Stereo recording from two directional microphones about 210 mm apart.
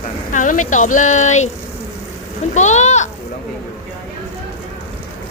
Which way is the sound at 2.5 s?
35° left (ahead or behind).